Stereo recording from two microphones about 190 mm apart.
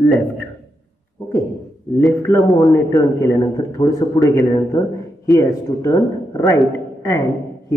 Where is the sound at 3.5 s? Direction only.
20° left (ahead or behind).